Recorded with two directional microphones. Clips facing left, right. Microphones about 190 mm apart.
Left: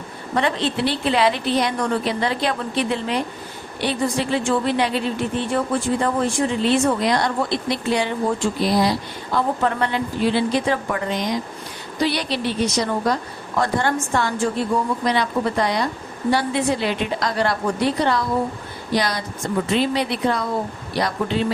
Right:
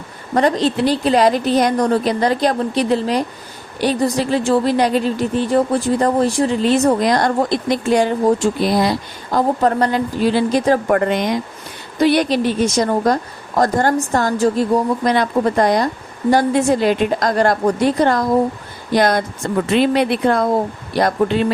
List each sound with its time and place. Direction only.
0.3 s a woman's voice: 40° right (ahead or behind)